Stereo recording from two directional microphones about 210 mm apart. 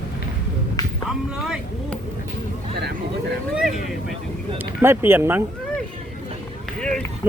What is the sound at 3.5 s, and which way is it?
Vehicle, centre (ahead or behind).